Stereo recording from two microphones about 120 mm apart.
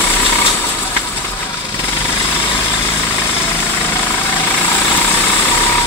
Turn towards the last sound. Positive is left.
turn(degrees=20)  # may be behind; listen again after turning